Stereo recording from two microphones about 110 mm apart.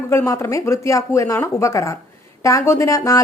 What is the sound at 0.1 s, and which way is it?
Speech, 25° left (ahead or behind).